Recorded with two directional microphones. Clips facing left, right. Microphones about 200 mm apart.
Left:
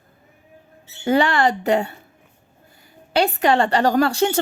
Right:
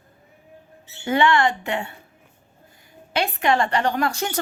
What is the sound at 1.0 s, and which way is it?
Speech, 35° left (ahead or behind).